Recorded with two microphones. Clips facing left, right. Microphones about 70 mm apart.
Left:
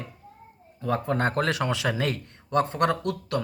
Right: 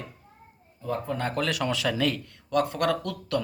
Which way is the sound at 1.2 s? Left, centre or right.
Left.